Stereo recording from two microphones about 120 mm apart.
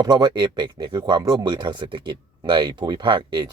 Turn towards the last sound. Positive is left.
turn(degrees=-40)  # may be behind; listen again after turning